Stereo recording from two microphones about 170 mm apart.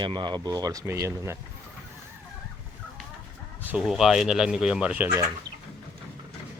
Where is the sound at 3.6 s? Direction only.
5° right (ahead or behind).